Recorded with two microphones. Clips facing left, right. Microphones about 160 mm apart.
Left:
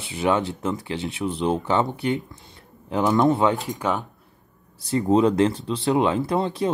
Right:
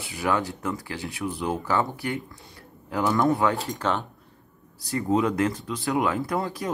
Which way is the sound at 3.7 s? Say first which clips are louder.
Left 2 dB; 10° left (ahead or behind).